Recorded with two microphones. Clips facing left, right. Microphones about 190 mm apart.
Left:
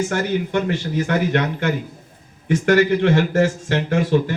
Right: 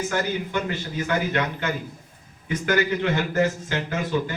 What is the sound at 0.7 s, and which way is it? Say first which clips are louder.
A man's voice: left 5 dB; 75° left (ahead or behind).